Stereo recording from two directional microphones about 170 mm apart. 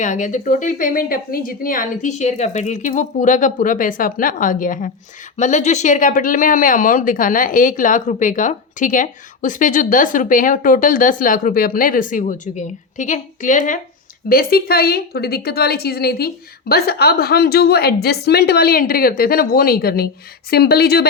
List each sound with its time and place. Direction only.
0.0 s speech: 45° left (ahead or behind)
14.3 s a woman's voice: 65° left (ahead or behind)